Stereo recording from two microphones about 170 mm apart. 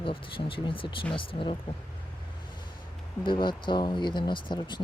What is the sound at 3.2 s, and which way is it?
Speech, 30° left (ahead or behind).